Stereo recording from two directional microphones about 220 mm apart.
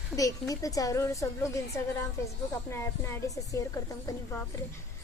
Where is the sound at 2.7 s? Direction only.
15° left (ahead or behind).